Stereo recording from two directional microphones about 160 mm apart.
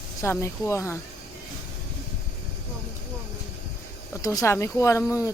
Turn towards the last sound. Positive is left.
turn(degrees=20)  # may be behind; listen again after turning